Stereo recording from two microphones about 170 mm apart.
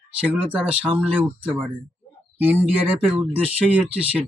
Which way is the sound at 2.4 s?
10° right (ahead or behind).